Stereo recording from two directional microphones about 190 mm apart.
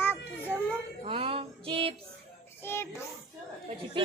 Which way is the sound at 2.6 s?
15° left (ahead or behind).